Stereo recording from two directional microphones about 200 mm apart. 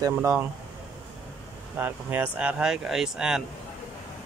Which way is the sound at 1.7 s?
10° right (ahead or behind).